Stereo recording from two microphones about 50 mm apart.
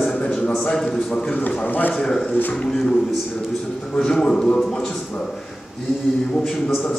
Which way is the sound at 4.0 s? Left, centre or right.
Centre.